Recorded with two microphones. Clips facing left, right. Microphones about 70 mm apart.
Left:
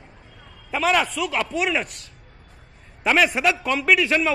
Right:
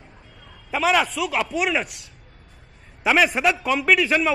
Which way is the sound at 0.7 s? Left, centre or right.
Centre.